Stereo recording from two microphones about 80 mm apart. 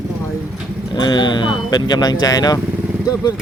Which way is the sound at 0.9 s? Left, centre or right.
Left.